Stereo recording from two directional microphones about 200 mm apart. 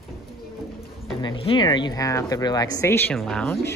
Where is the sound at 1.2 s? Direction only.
25° left (ahead or behind).